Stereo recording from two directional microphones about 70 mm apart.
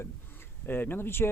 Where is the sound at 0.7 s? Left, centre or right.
Left.